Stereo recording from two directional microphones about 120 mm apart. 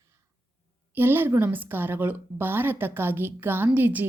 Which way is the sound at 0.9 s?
20° right (ahead or behind).